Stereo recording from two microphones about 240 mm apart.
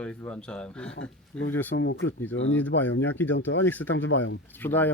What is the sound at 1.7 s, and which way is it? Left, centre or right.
Speech, left.